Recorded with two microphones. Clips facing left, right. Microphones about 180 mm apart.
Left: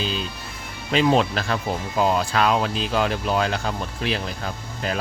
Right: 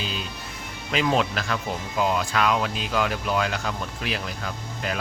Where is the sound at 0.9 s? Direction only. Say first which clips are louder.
Left 4 dB; 30° left (ahead or behind).